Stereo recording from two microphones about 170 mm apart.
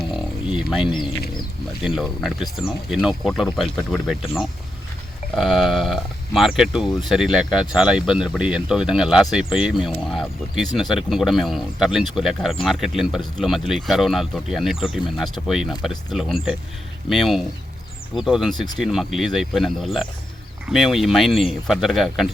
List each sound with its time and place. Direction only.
0.1 s a sound: 5° right (ahead or behind)
1.8 s speech: centre (ahead or behind)
18.5 s speech: 25° left (ahead or behind)
18.8 s speech: centre (ahead or behind)